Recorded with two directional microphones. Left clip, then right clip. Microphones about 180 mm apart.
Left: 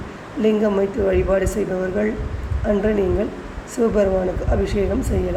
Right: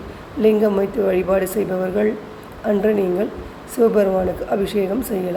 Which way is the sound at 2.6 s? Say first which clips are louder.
Right 1 dB; 10° right (ahead or behind).